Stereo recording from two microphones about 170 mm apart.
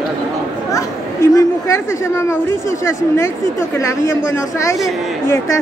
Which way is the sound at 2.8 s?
15° left (ahead or behind).